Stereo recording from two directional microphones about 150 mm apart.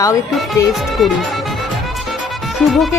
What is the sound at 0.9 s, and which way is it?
Speech, centre (ahead or behind).